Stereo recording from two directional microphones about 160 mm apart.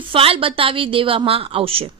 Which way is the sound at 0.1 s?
35° right (ahead or behind).